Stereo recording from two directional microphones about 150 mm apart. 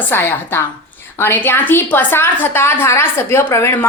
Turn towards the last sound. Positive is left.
turn(degrees=15)  # may be behind; listen again after turning